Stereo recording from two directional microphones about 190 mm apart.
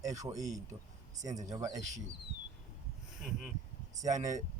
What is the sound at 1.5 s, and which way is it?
Speech, 20° right (ahead or behind).